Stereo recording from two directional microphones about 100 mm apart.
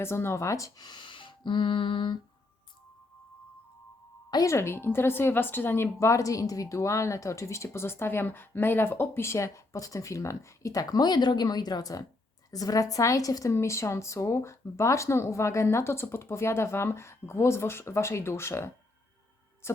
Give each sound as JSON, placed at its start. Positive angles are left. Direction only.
{"t": 0.0, "sound": "a woman's voice", "side_deg": 25}
{"t": 0.9, "sound": "a sound", "side_deg": 50}
{"t": 4.3, "sound": "a woman's voice", "side_deg": 40}
{"t": 4.5, "sound": "a woman's voice", "side_deg": 25}
{"t": 19.6, "sound": "music", "side_deg": 25}